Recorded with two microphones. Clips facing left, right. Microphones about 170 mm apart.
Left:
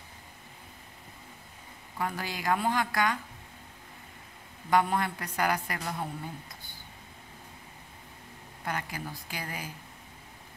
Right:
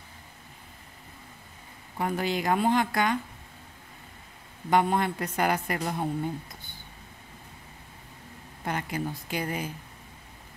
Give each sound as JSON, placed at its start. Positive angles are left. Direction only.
{"t": 2.0, "sound": "a woman's voice", "side_deg": -20}
{"t": 4.6, "sound": "a woman's voice", "side_deg": -25}
{"t": 8.6, "sound": "a woman's voice", "side_deg": -25}